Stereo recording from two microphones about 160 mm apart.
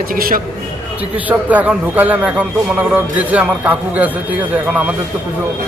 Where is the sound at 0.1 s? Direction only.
60° right (ahead or behind).